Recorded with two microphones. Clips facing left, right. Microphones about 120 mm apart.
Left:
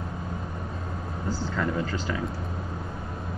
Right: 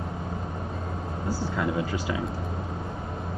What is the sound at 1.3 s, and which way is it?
Speech, 10° right (ahead or behind).